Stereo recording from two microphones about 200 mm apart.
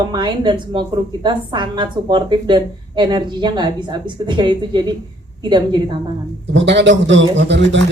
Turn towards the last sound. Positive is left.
turn(degrees=-65)  # may be behind; listen again after turning